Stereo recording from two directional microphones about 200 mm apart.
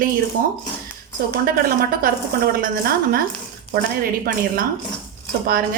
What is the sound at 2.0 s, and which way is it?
A woman's voice, 45° right (ahead or behind).